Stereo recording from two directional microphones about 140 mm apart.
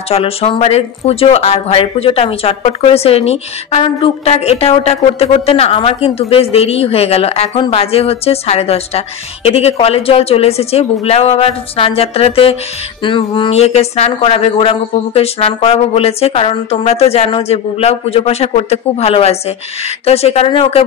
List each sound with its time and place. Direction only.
0.1 s speech: 45° left (ahead or behind)